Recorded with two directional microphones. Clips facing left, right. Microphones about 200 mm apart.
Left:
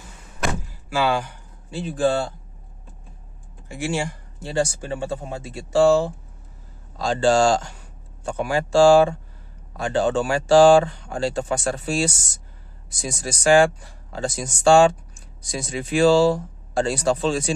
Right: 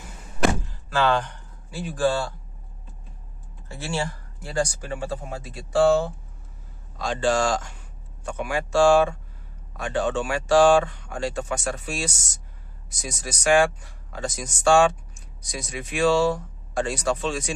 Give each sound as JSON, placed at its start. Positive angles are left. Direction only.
{"t": 0.7, "sound": "a sound", "side_deg": 10}
{"t": 1.7, "sound": "speech", "side_deg": 25}
{"t": 3.6, "sound": "speech", "side_deg": 15}